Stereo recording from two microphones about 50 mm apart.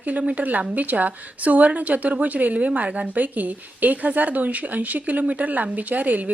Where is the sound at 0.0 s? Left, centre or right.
Right.